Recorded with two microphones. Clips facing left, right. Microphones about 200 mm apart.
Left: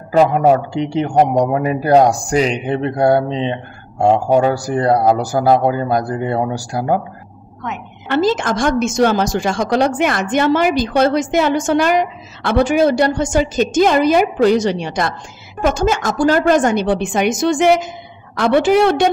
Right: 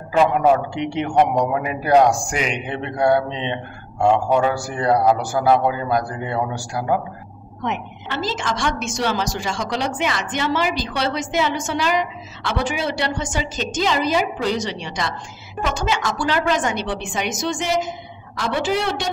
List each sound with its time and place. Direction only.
0.1 s speech: 35° left (ahead or behind)
8.1 s a woman's voice: 55° left (ahead or behind)